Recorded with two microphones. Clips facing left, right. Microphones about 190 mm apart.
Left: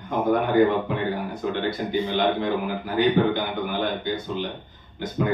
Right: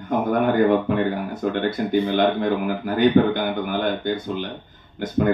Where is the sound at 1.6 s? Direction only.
55° right (ahead or behind).